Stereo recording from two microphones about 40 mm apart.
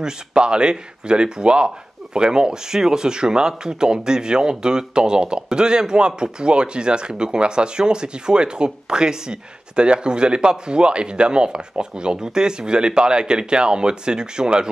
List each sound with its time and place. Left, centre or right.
0.0 s speech: right